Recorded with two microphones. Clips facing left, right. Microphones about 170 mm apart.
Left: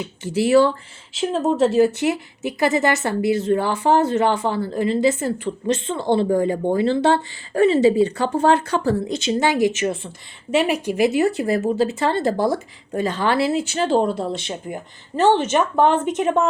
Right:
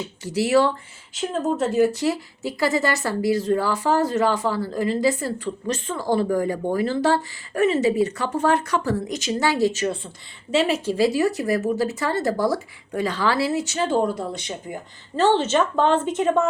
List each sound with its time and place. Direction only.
0.3 s speech: 25° left (ahead or behind)
1.5 s speech: 80° left
1.8 s speech: 25° left (ahead or behind)
13.7 s speech: 65° left (ahead or behind)
14.0 s speech: 25° left (ahead or behind)